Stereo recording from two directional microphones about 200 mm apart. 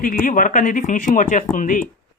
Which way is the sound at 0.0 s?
45° left (ahead or behind).